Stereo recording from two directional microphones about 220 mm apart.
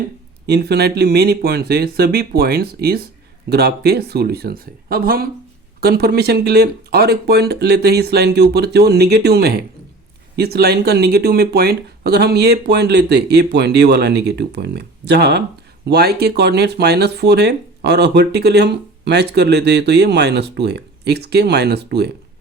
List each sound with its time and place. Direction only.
0.4 s speech: 45° right (ahead or behind)